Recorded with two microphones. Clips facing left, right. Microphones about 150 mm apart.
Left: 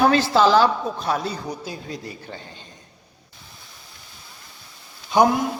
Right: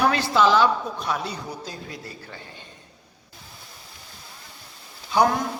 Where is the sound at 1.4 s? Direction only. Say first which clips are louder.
Left 4 dB; 10° left (ahead or behind).